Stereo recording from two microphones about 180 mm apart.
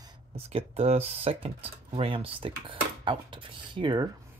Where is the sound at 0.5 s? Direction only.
35° right (ahead or behind).